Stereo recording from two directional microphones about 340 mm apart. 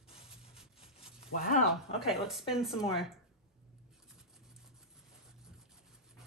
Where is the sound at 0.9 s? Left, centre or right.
Left.